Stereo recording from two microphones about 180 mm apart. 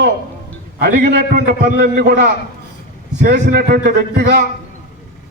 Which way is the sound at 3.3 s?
60° right (ahead or behind).